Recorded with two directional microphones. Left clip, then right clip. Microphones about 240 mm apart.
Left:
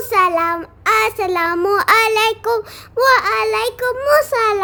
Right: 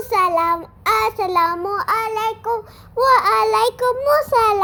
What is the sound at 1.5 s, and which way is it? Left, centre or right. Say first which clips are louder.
Child singing: left 6 dB; left.